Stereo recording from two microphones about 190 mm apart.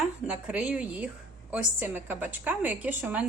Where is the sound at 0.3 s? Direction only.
5° right (ahead or behind).